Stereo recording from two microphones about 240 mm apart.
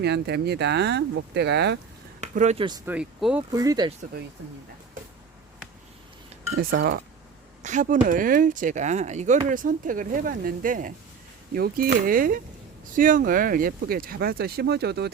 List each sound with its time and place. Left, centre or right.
0.0 s speech: right
2.2 s speech: right; by 3.4 s centre
3.5 s speech: centre
7.6 s speech: right